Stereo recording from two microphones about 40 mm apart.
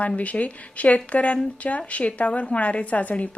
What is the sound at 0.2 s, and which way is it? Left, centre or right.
Speech, left.